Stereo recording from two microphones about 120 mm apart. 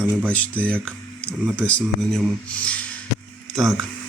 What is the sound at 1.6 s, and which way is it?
Speech, 5° left (ahead or behind).